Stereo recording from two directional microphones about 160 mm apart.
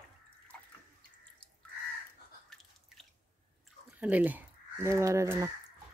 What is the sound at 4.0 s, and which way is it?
Speech, 10° right (ahead or behind).